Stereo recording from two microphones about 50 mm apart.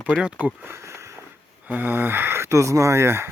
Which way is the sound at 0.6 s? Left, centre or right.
Right.